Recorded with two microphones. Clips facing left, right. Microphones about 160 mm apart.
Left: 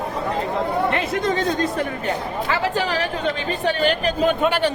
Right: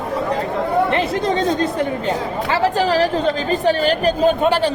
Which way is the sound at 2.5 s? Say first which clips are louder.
Right 6 dB; 35° right (ahead or behind).